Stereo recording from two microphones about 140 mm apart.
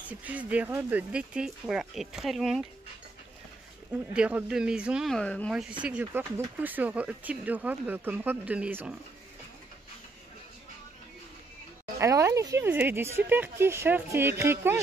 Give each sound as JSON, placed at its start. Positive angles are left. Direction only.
{"t": 0.1, "sound": "speech", "side_deg": -10}
{"t": 3.9, "sound": "speech", "side_deg": -10}
{"t": 5.5, "sound": "speech", "side_deg": -5}
{"t": 12.0, "sound": "speech", "side_deg": -20}